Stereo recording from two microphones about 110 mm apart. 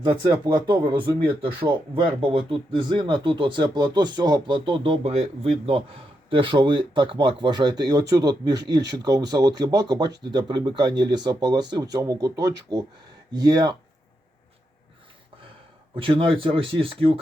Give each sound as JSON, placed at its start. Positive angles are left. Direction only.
{"t": 0.0, "sound": "speech", "side_deg": -40}
{"t": 6.3, "sound": "speech", "side_deg": -50}
{"t": 16.0, "sound": "speech", "side_deg": -55}